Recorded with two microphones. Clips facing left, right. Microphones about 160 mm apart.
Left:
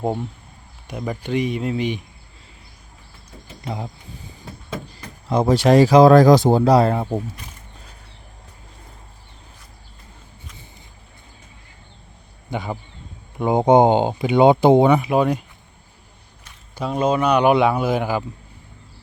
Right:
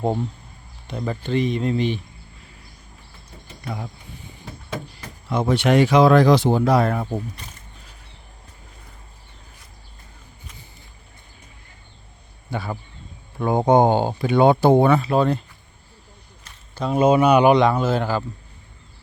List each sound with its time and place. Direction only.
0.9 s speech: 10° left (ahead or behind)
3.6 s speech: 25° left (ahead or behind)
5.3 s speech: 40° left (ahead or behind)
12.5 s speech: 20° left (ahead or behind)
16.4 s a sound: 10° left (ahead or behind)
16.9 s speech: 10° right (ahead or behind)
17.5 s speech: 10° left (ahead or behind)